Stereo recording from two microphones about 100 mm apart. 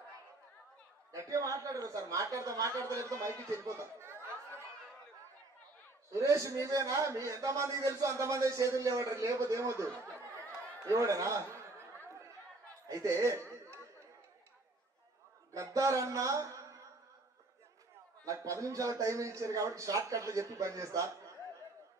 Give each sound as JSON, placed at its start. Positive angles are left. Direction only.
{"t": 1.1, "sound": "a man's voice", "side_deg": -35}
{"t": 6.1, "sound": "a man's voice", "side_deg": -30}
{"t": 12.8, "sound": "speech", "side_deg": -35}
{"t": 15.5, "sound": "music", "side_deg": -30}
{"t": 18.2, "sound": "a man's voice", "side_deg": -35}